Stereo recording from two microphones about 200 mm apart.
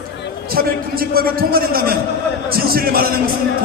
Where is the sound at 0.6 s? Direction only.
45° right (ahead or behind).